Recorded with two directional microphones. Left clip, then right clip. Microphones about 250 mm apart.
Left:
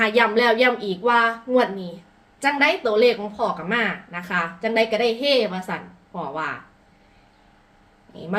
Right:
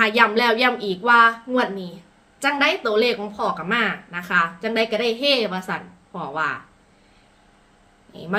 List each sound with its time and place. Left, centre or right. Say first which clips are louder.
0.0 s speech: right 1 dB; centre
8.1 s speech: right 3 dB; centre